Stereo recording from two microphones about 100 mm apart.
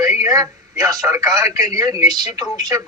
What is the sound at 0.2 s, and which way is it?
A man's voice, 35° right (ahead or behind).